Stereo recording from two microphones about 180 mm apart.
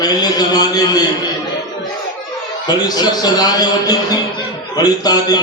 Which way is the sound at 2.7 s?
20° left (ahead or behind).